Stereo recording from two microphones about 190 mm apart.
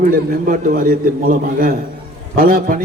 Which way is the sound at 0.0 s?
45° right (ahead or behind).